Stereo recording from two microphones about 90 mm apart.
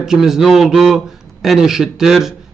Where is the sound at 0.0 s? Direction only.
5° right (ahead or behind).